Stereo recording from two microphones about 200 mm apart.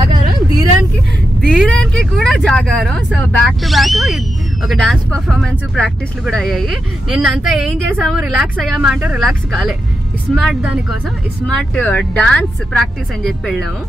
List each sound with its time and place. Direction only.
0.0 s vehicle: 20° right (ahead or behind)
1.4 s speech: centre (ahead or behind)